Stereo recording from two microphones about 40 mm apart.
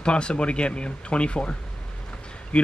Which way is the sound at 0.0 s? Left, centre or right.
Left.